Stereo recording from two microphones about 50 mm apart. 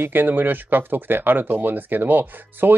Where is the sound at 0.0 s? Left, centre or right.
Right.